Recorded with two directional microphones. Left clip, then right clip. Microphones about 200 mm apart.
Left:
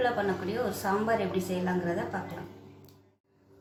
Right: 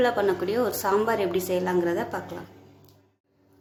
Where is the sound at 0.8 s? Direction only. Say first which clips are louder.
Right 6 dB; 55° right (ahead or behind).